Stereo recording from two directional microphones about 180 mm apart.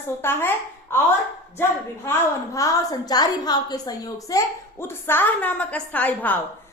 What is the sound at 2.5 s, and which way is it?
A woman's voice, 20° left (ahead or behind).